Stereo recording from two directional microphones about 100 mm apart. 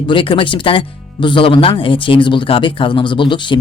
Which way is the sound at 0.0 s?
60° left (ahead or behind).